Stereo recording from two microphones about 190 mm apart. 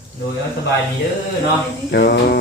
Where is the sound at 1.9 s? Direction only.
60° left (ahead or behind).